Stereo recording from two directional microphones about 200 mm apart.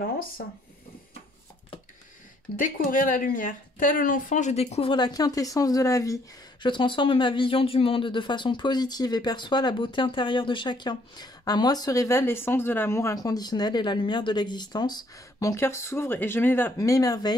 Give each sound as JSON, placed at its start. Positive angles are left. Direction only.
{"t": 2.5, "sound": "a woman's voice", "side_deg": 40}